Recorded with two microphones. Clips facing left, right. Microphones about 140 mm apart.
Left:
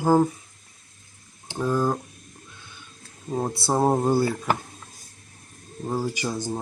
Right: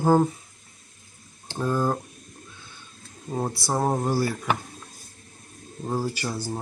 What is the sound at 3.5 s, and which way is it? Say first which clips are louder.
Speech: left 5 dB; 25° left (ahead or behind).